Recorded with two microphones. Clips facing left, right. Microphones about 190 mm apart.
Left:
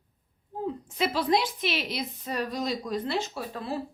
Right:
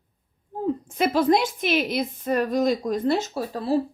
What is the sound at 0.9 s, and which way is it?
A woman's voice, 50° right (ahead or behind).